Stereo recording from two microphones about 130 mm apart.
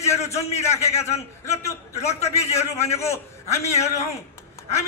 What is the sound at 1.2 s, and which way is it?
A man's voice, 20° left (ahead or behind).